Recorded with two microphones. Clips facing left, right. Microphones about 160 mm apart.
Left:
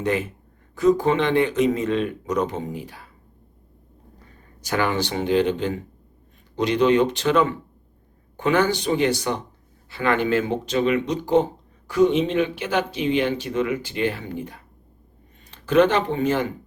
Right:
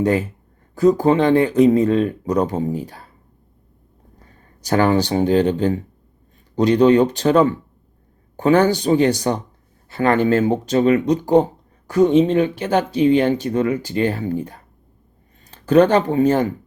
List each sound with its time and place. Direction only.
0.0 s speech: 40° right (ahead or behind)
4.6 s speech: 40° right (ahead or behind)